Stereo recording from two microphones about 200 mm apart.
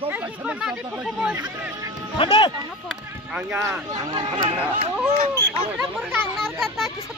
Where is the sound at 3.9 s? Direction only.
20° right (ahead or behind).